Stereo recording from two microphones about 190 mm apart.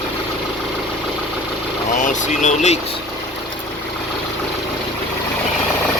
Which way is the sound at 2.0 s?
40° left (ahead or behind).